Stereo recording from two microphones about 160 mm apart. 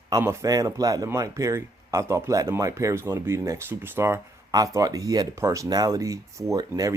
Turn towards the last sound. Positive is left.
turn(degrees=-20)  # may be behind; listen again after turning